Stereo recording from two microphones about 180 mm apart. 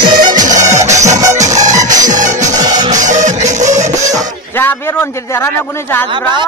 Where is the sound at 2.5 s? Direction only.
20° right (ahead or behind).